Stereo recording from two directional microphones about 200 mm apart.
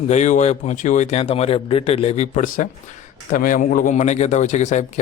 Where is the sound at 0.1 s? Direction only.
35° left (ahead or behind).